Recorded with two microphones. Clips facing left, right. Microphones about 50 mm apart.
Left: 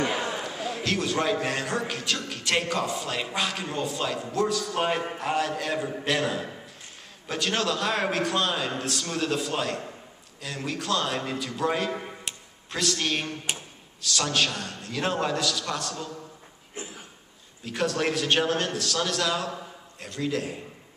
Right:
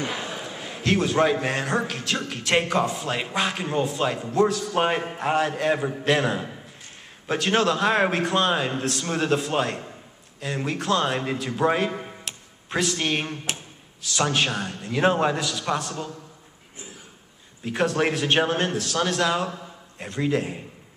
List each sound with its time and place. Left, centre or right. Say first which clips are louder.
0.7 s a man's voice: right 7 dB; centre
11.9 s a sound: even; centre
12.6 s a man's voice: right 3 dB; centre
17.6 s a man's voice: right 4 dB; centre